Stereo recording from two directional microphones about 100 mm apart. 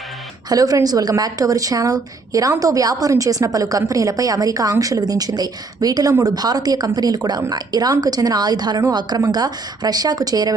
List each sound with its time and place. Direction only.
0.4 s a woman's voice: 35° right (ahead or behind)